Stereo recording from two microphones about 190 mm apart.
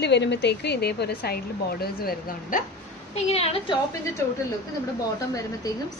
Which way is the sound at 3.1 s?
35° left (ahead or behind).